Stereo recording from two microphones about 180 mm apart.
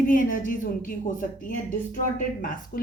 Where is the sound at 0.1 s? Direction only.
50° left (ahead or behind).